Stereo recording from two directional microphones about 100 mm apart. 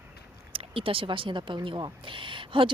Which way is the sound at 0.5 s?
65° right (ahead or behind).